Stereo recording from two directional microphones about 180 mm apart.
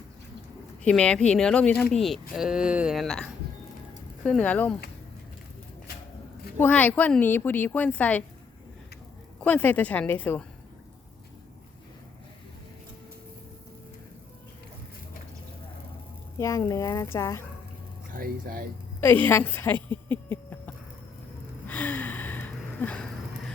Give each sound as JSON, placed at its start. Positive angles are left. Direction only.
{"t": 0.9, "sound": "speech", "side_deg": 5}
{"t": 4.3, "sound": "a woman's voice", "side_deg": 5}
{"t": 6.6, "sound": "a woman's voice", "side_deg": 10}
{"t": 9.4, "sound": "a woman's voice", "side_deg": 10}
{"t": 16.4, "sound": "a woman's voice", "side_deg": 15}
{"t": 18.1, "sound": "speech", "side_deg": -55}
{"t": 18.9, "sound": "a sound", "side_deg": 10}
{"t": 21.7, "sound": "gasp", "side_deg": 10}